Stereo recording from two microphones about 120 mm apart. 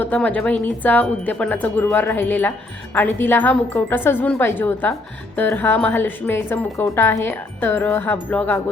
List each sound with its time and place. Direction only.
0.0 s speech: 15° left (ahead or behind)